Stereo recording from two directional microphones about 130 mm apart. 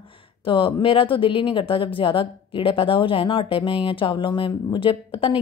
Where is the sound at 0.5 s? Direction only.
40° left (ahead or behind).